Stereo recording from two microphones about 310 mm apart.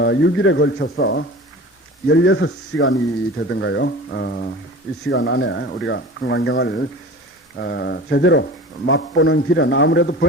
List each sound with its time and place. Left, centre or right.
0.0 s speech: left